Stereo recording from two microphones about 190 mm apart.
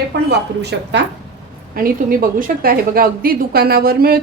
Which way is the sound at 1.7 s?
50° right (ahead or behind).